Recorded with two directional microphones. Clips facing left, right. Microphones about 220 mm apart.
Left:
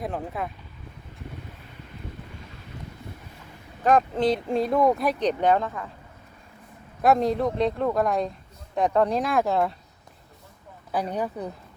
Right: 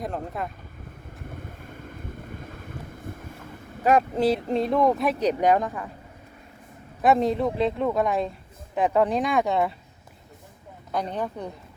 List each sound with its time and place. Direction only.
0.0 s speech: centre (ahead or behind)
1.3 s boat: 50° right (ahead or behind)
3.8 s speech: 10° right (ahead or behind)
7.0 s speech: centre (ahead or behind)
10.9 s speech: 10° left (ahead or behind)